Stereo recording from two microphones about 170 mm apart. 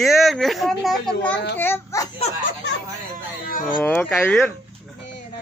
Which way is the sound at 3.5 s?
55° left (ahead or behind).